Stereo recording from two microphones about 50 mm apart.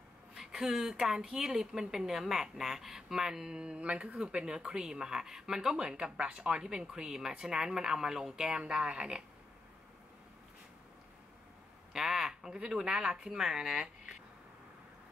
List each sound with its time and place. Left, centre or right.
0.4 s a woman's voice: centre
11.9 s speech: centre